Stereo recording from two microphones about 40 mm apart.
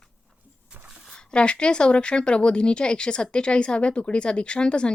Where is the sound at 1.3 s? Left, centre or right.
Left.